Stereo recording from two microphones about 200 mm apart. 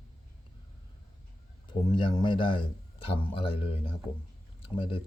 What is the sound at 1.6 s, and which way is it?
A man's voice, 20° left (ahead or behind).